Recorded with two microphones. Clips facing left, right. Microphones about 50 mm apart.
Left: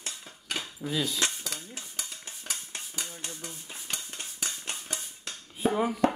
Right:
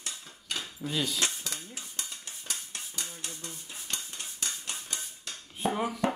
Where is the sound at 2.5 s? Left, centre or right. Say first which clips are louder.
Left 1 dB; centre.